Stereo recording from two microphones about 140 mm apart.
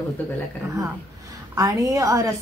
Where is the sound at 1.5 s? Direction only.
25° right (ahead or behind).